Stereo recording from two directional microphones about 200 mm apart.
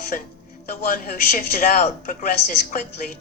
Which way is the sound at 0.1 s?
40° left (ahead or behind).